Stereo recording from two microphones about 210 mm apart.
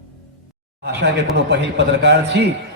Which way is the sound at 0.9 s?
55° right (ahead or behind).